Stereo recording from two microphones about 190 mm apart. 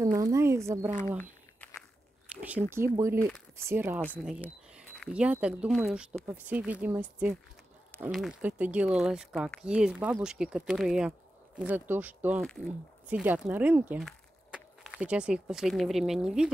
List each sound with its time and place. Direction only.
0.0 s speech: 15° right (ahead or behind)
0.8 s speech: 40° right (ahead or behind)
2.2 s speech: 10° right (ahead or behind)
3.2 s speech: centre (ahead or behind)
3.5 s speech: 10° right (ahead or behind)